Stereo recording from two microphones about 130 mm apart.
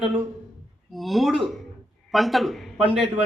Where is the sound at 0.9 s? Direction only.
Centre (ahead or behind).